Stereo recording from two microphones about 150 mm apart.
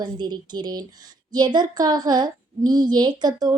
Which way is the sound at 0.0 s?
30° right (ahead or behind).